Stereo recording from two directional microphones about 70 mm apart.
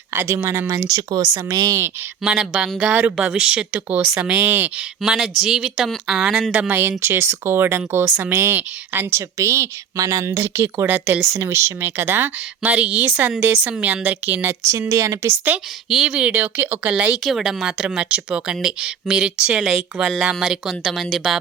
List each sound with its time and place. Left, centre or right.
0.1 s speech: right
0.9 s speech: right
2.2 s speech: centre; by 4.7 s right
4.8 s speech: centre
6.5 s speech: right
11.3 s speech: right
12.7 s speech: centre
14.7 s speech: right
15.9 s speech: centre
16.1 s speech: centre
17.2 s speech: centre